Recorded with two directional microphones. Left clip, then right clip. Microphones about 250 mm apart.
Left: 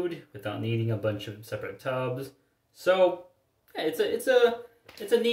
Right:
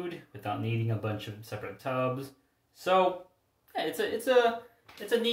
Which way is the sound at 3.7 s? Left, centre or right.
Centre.